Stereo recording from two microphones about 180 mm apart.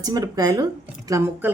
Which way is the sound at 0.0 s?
20° right (ahead or behind).